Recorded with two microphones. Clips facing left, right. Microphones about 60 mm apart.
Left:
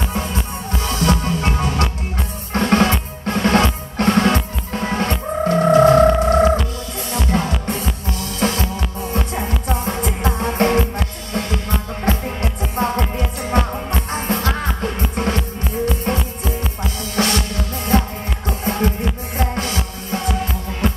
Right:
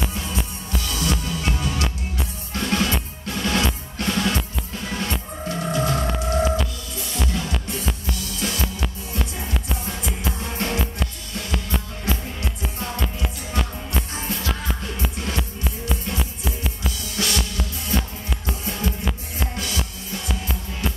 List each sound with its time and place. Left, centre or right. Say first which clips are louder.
0.1 s music: left 5 dB; left
12.0 s music: left 7 dB; left
16.2 s music: left 5 dB; centre
16.8 s music: left 7 dB; left